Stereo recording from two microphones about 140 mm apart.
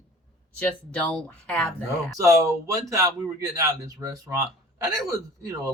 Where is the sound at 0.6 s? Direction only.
10° left (ahead or behind).